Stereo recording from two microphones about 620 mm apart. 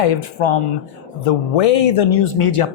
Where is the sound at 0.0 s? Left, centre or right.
Left.